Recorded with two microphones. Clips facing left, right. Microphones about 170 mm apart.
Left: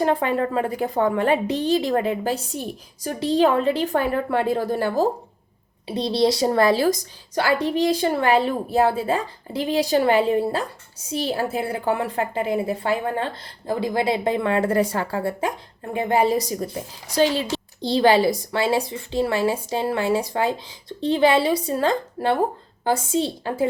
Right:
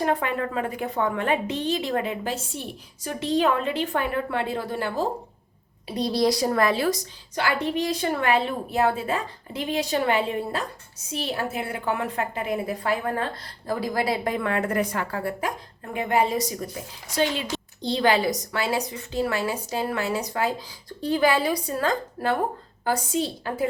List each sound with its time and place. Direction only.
0.0 s a woman's voice: 30° left (ahead or behind)
5.9 s a woman's voice: 25° left (ahead or behind)